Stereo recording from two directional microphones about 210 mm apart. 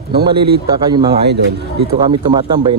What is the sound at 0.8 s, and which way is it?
A man's voice, 20° right (ahead or behind).